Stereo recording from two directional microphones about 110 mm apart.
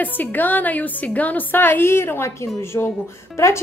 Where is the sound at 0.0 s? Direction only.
15° left (ahead or behind).